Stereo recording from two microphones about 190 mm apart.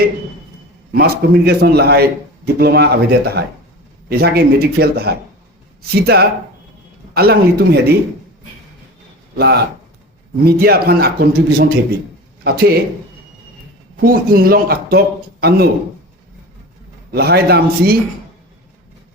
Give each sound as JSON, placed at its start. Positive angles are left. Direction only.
{"t": 0.9, "sound": "speech", "side_deg": -55}
{"t": 9.4, "sound": "speech", "side_deg": -55}
{"t": 13.9, "sound": "a man's voice", "side_deg": -50}
{"t": 17.1, "sound": "speech", "side_deg": -55}